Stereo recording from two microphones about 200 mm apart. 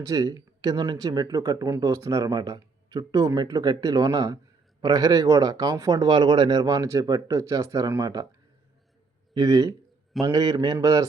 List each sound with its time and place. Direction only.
0.0 s speech: 20° right (ahead or behind)
9.3 s a man's voice: 20° right (ahead or behind)